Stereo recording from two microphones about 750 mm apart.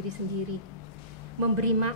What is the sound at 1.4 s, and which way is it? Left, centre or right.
Speech, right.